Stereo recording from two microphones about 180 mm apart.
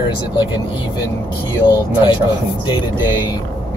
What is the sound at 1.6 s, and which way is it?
Speech, 25° left (ahead or behind).